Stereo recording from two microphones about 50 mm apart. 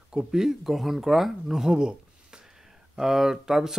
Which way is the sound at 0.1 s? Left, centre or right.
Centre.